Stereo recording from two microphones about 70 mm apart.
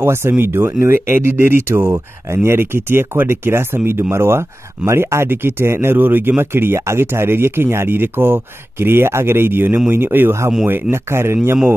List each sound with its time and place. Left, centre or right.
0.0 s speech: right